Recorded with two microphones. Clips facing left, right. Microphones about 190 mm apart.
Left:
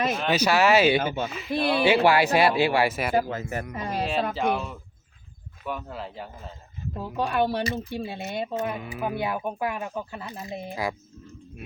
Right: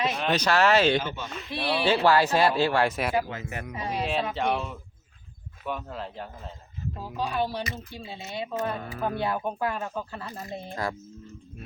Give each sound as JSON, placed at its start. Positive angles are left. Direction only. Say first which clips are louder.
{"t": 0.1, "sound": "speech", "louder": "left 2 dB", "side_deg": 5}
{"t": 1.8, "sound": "speech", "louder": "left 1 dB", "side_deg": 10}
{"t": 3.2, "sound": "speech", "louder": "left 3 dB", "side_deg": 40}
{"t": 3.8, "sound": "speech", "louder": "right 1 dB", "side_deg": 50}
{"t": 4.4, "sound": "speech", "louder": "left 2 dB", "side_deg": 0}
{"t": 7.2, "sound": "speech", "louder": "left 4 dB", "side_deg": 60}
{"t": 8.6, "sound": "speech", "louder": "even", "side_deg": 15}